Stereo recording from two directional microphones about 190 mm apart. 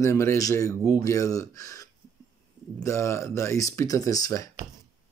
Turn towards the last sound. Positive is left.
turn(degrees=20)  # may be behind; listen again after turning